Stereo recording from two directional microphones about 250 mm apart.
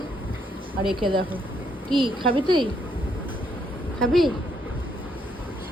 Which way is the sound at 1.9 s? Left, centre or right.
Centre.